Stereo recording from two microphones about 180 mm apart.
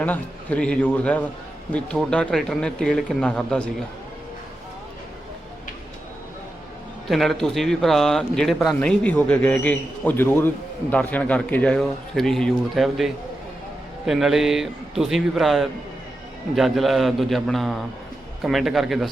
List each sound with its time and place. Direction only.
0.0 s a man's voice: 10° left (ahead or behind)
7.1 s speech: centre (ahead or behind)
14.1 s speech: centre (ahead or behind)